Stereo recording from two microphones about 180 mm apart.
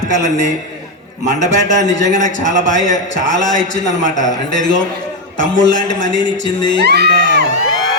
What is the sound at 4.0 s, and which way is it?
Speech, 45° left (ahead or behind).